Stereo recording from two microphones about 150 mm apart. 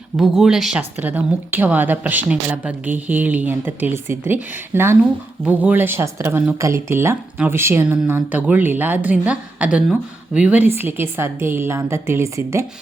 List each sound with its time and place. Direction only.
0.2 s a woman's voice: 5° right (ahead or behind); by 12.6 s 20° right (ahead or behind)